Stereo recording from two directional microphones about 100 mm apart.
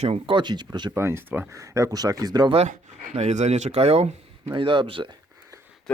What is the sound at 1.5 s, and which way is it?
Speech, 30° right (ahead or behind).